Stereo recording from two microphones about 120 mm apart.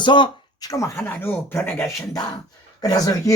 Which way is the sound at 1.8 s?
30° left (ahead or behind).